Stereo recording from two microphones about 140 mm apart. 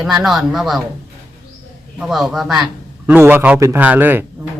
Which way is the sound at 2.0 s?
Centre (ahead or behind).